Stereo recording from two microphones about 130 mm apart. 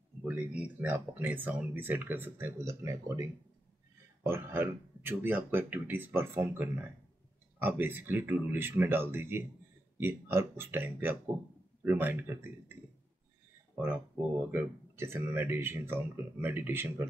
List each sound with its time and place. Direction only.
0.2 s speech: 10° right (ahead or behind)
14.5 s speech: 20° right (ahead or behind)